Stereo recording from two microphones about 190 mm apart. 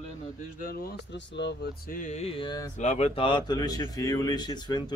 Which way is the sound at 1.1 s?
70° left (ahead or behind).